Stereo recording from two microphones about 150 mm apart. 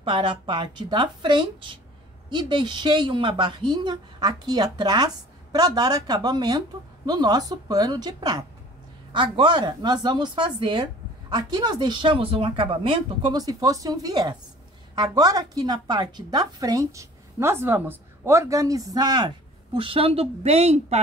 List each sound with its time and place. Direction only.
0.0 s a woman's voice: 30° right (ahead or behind)